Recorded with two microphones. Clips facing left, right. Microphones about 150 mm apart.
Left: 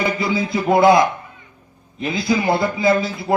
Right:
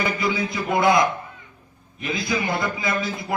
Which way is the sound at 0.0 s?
30° left (ahead or behind).